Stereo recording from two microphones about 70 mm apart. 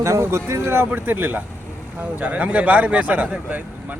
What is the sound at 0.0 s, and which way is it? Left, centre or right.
Speech, right.